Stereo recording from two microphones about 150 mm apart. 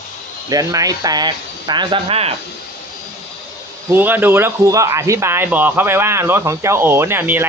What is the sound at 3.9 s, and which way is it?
Speech, 15° right (ahead or behind).